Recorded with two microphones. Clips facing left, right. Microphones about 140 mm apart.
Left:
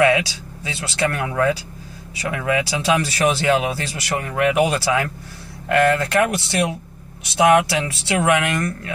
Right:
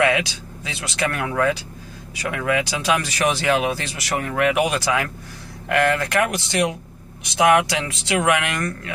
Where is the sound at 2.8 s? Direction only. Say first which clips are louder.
Left 2 dB; 25° left (ahead or behind).